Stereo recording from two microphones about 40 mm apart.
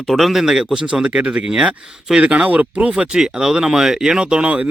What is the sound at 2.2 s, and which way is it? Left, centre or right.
Speech, right.